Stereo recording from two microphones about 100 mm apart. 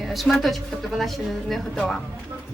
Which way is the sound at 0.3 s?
5° left (ahead or behind).